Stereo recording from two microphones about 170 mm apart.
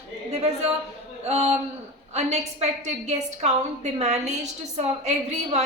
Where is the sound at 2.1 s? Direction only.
40° right (ahead or behind).